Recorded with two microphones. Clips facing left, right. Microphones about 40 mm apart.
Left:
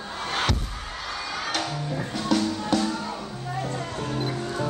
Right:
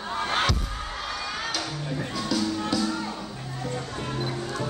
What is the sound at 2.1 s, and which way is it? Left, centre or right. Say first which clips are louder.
Music: left 3 dB; left.